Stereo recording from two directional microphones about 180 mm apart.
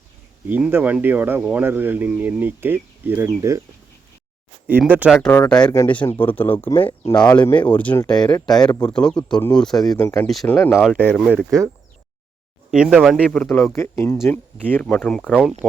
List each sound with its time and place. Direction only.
0.4 s speech: 10° right (ahead or behind)
4.6 s speech: 10° right (ahead or behind)
5.2 s speech: 5° left (ahead or behind)
5.5 s speech: 20° left (ahead or behind)
5.9 s speech: 10° left (ahead or behind)
6.7 s speech: 30° left (ahead or behind)
7.2 s speech: 5° left (ahead or behind)
8.3 s speech: 20° left (ahead or behind)
8.9 s speech: 5° left (ahead or behind)
9.9 s speech: 15° left (ahead or behind)
10.2 s speech: 5° left (ahead or behind)
12.7 s speech: 5° right (ahead or behind)